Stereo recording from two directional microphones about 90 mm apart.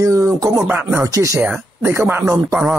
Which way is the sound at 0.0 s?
30° right (ahead or behind).